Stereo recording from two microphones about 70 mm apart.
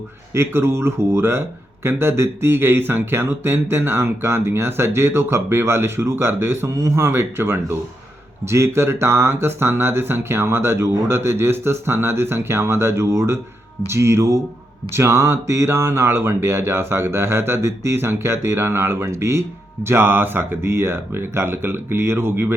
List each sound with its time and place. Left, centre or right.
0.3 s speech: right